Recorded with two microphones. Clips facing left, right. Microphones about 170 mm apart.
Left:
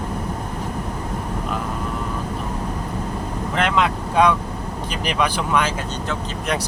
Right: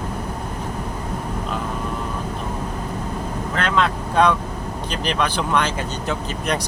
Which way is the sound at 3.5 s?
15° left (ahead or behind).